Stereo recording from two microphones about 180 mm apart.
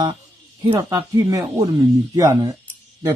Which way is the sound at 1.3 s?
20° right (ahead or behind).